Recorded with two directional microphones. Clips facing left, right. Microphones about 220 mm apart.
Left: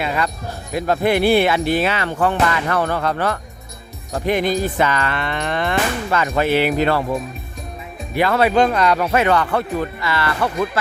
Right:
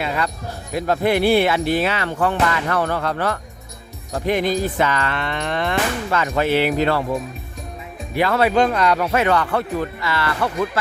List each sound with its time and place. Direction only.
0.0 s speech: 15° left (ahead or behind)
8.1 s speech: 15° left (ahead or behind)